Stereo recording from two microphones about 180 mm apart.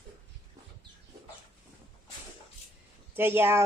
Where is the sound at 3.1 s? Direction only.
10° right (ahead or behind).